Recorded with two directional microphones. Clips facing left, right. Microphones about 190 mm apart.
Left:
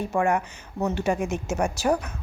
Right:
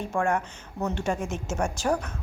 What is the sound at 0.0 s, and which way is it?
A woman's voice, 5° left (ahead or behind).